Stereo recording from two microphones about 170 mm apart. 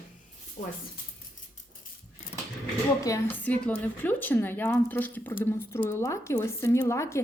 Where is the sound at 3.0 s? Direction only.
15° left (ahead or behind).